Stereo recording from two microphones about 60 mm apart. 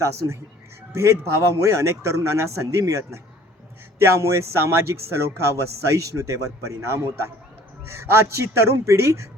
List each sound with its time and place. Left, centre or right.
0.0 s a man's voice: right